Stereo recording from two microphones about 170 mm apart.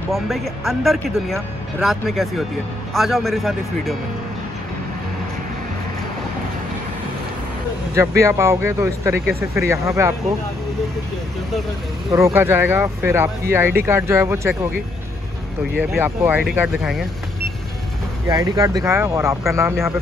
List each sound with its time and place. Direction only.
0.1 s speech: centre (ahead or behind)
7.9 s speech: 15° right (ahead or behind)
12.1 s speech: 15° right (ahead or behind)
15.8 s speech: 10° right (ahead or behind)
18.3 s speech: 20° right (ahead or behind)